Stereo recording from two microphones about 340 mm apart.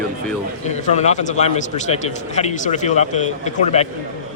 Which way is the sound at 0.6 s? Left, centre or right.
Centre.